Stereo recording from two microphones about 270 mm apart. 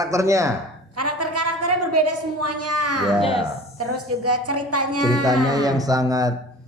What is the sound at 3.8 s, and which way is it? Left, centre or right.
A woman's voice, right.